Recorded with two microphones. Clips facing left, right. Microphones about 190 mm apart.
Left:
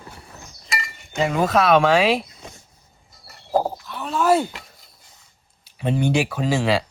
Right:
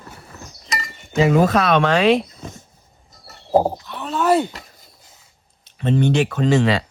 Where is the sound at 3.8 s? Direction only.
Centre (ahead or behind).